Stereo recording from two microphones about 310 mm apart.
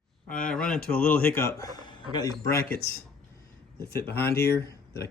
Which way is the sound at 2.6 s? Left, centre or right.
Left.